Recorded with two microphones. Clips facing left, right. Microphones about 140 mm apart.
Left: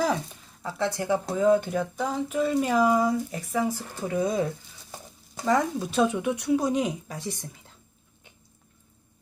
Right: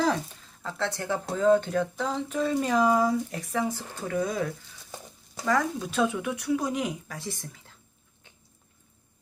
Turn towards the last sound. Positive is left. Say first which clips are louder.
# left 2 dB
turn(degrees=20)  # may be behind; listen again after turning